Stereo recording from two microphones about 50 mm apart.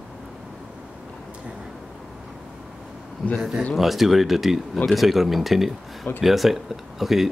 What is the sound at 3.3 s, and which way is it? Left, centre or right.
Speech, centre.